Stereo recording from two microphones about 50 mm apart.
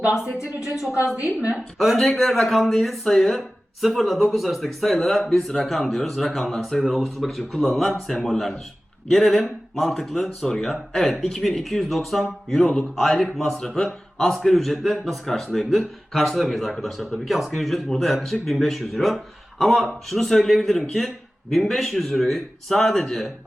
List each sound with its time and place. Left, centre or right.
0.3 s a woman's voice: left
1.4 s a woman's voice: right
1.8 s speech: centre